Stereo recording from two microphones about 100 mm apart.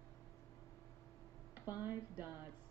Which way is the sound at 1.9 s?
20° right (ahead or behind).